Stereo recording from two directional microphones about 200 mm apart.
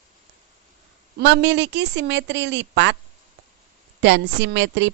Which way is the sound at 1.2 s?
60° right (ahead or behind).